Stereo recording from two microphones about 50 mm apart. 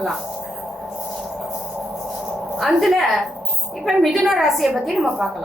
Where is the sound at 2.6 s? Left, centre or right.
Centre.